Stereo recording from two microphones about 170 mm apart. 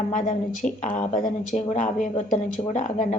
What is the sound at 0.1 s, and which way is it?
A woman's voice, 50° left (ahead or behind).